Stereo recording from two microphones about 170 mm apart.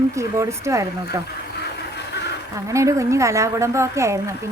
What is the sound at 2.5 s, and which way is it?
A woman's voice, 20° right (ahead or behind).